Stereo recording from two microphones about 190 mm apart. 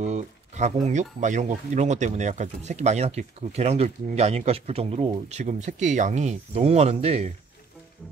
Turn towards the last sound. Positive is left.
turn(degrees=-35)  # may be behind; listen again after turning